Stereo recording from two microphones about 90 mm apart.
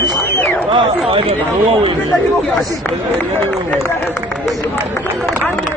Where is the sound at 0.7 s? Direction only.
90° right.